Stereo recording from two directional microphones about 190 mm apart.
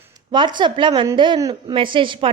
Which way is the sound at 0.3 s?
25° right (ahead or behind).